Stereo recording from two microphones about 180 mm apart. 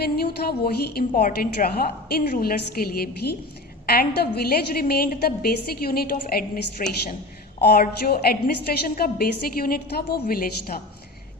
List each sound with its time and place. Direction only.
0.0 s a woman's voice: 60° left (ahead or behind)